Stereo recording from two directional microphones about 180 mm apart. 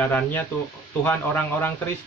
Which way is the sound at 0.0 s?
10° left (ahead or behind).